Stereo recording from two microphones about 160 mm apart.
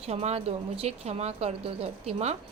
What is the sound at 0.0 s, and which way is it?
Speech, 40° right (ahead or behind).